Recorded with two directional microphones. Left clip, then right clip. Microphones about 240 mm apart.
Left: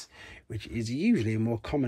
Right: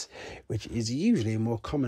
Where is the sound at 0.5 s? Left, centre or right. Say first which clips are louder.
Right 1 dB; centre.